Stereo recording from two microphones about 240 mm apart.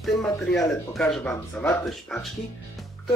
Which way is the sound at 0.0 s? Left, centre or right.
Centre.